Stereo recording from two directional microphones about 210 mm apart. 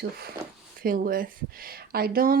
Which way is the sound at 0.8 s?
45° right (ahead or behind).